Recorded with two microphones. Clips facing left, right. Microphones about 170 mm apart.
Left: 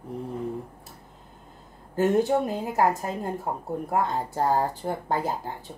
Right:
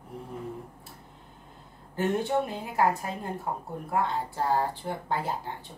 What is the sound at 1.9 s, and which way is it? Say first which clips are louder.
Speech: left 5 dB; 40° left (ahead or behind).